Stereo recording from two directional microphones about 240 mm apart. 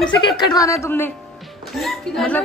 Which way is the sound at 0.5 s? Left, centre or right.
Centre.